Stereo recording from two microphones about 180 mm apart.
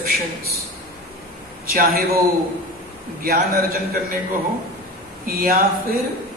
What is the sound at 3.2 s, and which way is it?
Speech, 55° right (ahead or behind).